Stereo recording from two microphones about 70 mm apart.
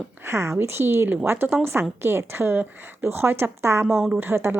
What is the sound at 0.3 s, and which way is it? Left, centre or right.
A woman's voice, right.